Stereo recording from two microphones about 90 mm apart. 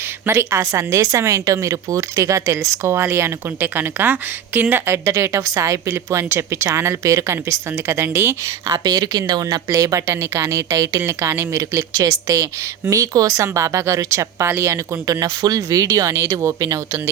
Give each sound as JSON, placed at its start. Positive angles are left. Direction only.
{"t": 0.3, "sound": "speech", "side_deg": -30}
{"t": 8.7, "sound": "speech", "side_deg": -50}